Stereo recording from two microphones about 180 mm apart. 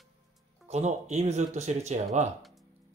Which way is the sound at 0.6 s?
40° right (ahead or behind).